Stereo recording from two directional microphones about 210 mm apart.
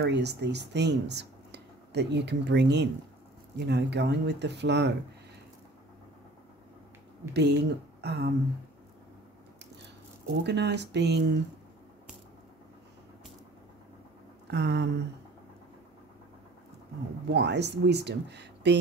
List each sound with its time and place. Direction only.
0.0 s speech: 55° right (ahead or behind)
7.3 s speech: 50° right (ahead or behind)
10.4 s speech: 55° right (ahead or behind)
14.5 s speech: 55° right (ahead or behind)
17.3 s speech: 55° right (ahead or behind)